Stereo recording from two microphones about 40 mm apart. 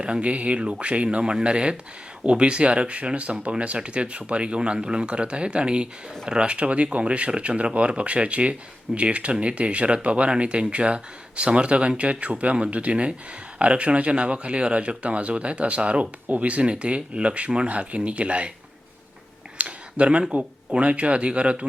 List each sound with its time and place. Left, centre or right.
0.0 s speech: right
19.5 s a sound: right
20.7 s speech: right